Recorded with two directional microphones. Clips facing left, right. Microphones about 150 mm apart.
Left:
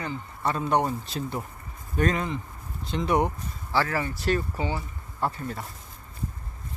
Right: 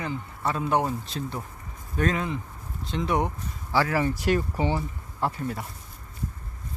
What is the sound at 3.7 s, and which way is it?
Speech, 10° right (ahead or behind).